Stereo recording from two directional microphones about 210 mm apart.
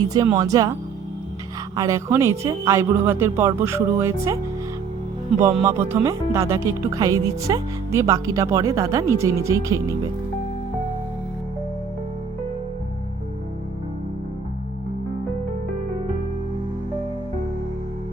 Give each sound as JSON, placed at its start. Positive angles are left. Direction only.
{"t": 0.0, "sound": "speech", "side_deg": -15}
{"t": 1.7, "sound": "speech", "side_deg": -15}
{"t": 5.6, "sound": "speech", "side_deg": -10}